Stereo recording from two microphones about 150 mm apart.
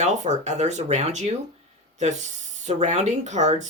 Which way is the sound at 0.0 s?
50° right (ahead or behind).